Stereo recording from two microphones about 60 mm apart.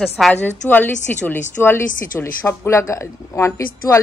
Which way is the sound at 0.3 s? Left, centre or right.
Left.